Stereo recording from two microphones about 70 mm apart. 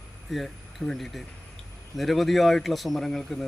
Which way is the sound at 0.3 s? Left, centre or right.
Centre.